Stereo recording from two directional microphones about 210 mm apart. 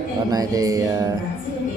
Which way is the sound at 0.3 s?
15° right (ahead or behind).